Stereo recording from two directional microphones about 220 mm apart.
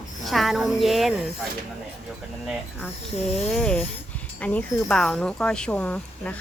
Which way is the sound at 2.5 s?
5° right (ahead or behind).